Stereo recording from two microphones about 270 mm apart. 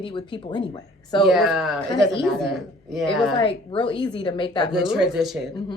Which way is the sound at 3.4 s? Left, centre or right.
Centre.